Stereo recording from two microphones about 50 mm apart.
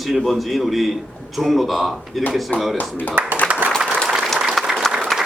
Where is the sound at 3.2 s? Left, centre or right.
Right.